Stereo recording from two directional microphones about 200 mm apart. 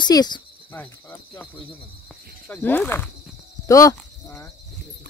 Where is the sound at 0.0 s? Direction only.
20° left (ahead or behind).